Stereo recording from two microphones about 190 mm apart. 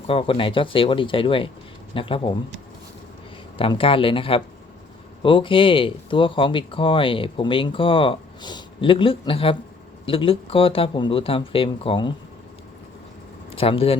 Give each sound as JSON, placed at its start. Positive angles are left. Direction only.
{"t": 0.1, "sound": "speech", "side_deg": 30}
{"t": 3.6, "sound": "speech", "side_deg": 30}
{"t": 13.5, "sound": "speech", "side_deg": 30}